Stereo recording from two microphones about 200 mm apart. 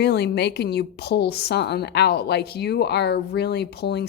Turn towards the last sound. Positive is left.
turn(degrees=55)  # may be behind; listen again after turning